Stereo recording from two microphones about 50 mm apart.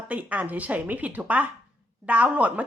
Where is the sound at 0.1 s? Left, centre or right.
Right.